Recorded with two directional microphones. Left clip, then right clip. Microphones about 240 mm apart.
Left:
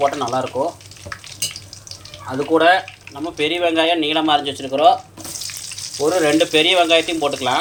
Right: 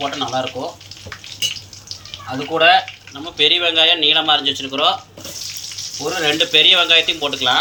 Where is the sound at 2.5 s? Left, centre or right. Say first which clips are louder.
Right 1 dB; left.